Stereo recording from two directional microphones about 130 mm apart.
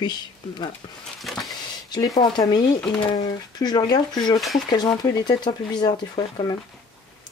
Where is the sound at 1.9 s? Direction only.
30° left (ahead or behind).